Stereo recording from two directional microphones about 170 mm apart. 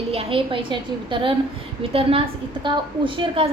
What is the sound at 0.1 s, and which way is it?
A woman's voice, 35° right (ahead or behind).